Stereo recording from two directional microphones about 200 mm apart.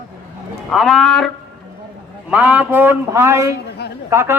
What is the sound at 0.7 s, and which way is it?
Speech, centre (ahead or behind).